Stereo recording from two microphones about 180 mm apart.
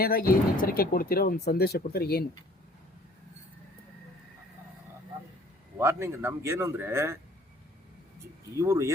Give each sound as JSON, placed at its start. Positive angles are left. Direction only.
{"t": 0.0, "sound": "speech", "side_deg": 55}
{"t": 5.8, "sound": "speech", "side_deg": -15}
{"t": 8.5, "sound": "speech", "side_deg": -15}